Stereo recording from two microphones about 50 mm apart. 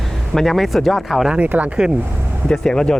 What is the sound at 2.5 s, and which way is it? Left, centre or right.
Speech, centre.